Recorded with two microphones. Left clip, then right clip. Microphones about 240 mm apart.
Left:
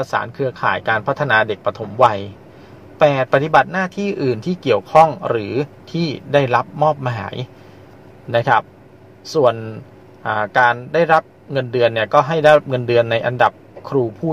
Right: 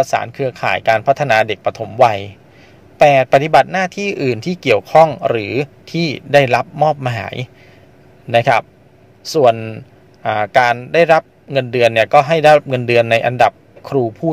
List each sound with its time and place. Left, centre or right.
0.0 s a man's voice: right